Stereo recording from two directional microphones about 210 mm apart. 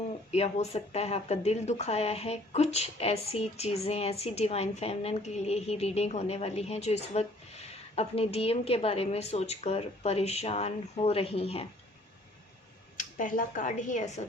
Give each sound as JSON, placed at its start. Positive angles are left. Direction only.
{"t": 0.3, "sound": "speech", "side_deg": 30}
{"t": 13.0, "sound": "a woman's voice", "side_deg": 40}